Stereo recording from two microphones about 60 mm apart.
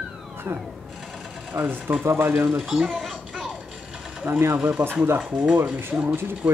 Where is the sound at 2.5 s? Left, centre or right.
Centre.